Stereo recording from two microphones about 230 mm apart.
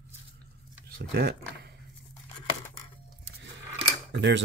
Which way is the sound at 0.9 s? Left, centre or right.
Right.